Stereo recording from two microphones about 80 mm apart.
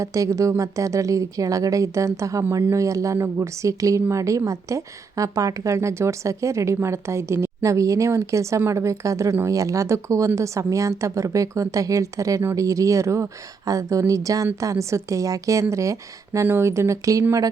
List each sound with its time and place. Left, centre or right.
0.0 s a woman's voice: right